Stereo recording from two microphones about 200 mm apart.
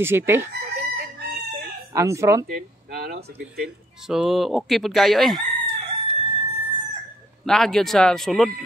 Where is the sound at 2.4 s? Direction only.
50° right (ahead or behind).